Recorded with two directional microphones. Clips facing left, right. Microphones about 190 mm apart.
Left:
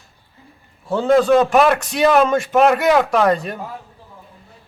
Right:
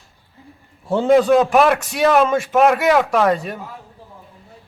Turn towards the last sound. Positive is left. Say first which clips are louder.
# left 1 dB
turn(degrees=-5)  # may be behind; listen again after turning